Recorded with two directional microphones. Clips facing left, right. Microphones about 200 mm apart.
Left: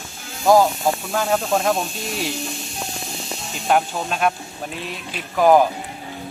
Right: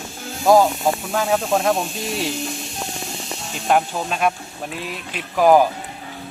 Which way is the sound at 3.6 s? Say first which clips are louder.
Right 1 dB; centre (ahead or behind).